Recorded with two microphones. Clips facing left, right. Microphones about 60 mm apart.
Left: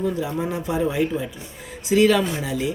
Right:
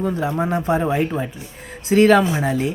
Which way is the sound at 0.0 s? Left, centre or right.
Right.